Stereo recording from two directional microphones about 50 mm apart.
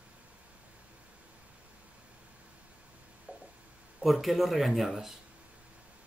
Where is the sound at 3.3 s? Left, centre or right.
Right.